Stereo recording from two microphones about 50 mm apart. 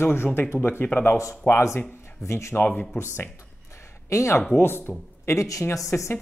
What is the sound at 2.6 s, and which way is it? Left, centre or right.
Speech, left.